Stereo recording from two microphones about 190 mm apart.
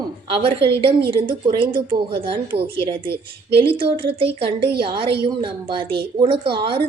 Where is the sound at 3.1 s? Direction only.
60° right (ahead or behind).